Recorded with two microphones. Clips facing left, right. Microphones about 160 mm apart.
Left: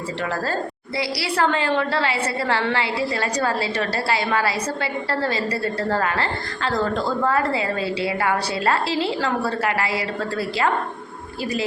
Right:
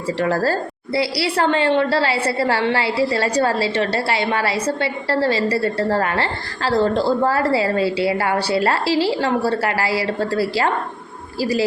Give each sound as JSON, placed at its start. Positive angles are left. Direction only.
{"t": 0.2, "sound": "a woman's voice", "side_deg": -40}